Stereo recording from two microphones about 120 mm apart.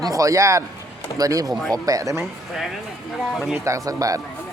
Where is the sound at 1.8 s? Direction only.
30° right (ahead or behind).